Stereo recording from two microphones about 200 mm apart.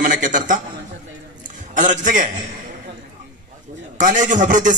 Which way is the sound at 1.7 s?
40° right (ahead or behind).